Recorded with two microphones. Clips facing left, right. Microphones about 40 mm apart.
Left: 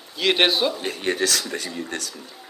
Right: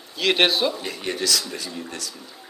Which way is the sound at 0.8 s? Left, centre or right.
Left.